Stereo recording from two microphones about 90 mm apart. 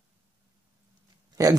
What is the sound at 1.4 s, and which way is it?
Speech, 40° right (ahead or behind).